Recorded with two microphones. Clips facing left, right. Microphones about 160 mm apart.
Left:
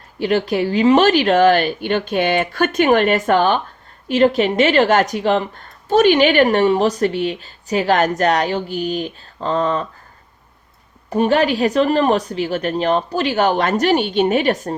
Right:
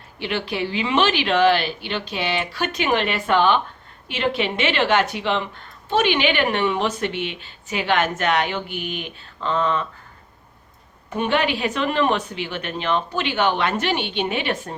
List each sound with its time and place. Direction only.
0.2 s a woman's voice: 40° left (ahead or behind)
11.1 s a woman's voice: 40° left (ahead or behind)